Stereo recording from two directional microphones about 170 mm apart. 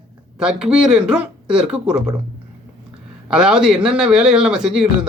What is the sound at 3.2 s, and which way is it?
A man's voice, 5° right (ahead or behind).